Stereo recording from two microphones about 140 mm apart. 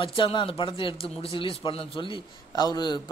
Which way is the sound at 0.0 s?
35° left (ahead or behind).